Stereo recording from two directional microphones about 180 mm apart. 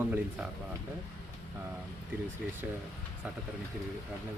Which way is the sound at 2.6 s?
5° right (ahead or behind).